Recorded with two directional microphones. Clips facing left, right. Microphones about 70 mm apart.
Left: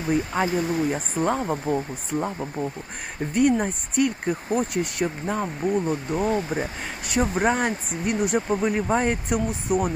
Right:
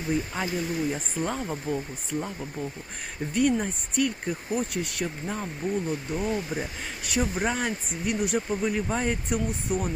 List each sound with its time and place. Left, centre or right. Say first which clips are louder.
0.4 s speech: left 5 dB; left
8.9 s speech: left 5 dB; left